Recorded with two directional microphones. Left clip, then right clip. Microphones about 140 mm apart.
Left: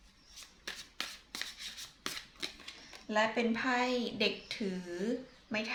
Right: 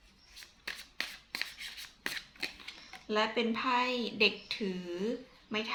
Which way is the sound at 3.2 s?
25° left (ahead or behind).